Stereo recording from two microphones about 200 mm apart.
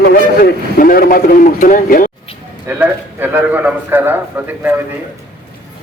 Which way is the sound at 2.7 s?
10° right (ahead or behind).